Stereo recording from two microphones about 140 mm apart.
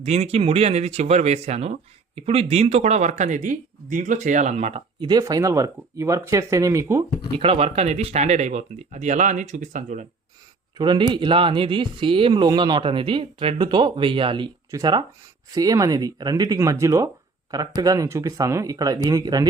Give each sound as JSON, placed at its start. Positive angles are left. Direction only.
{"t": 0.0, "sound": "speech", "side_deg": -50}
{"t": 4.9, "sound": "speech", "side_deg": -30}
{"t": 7.3, "sound": "speech", "side_deg": -40}
{"t": 10.8, "sound": "speech", "side_deg": -30}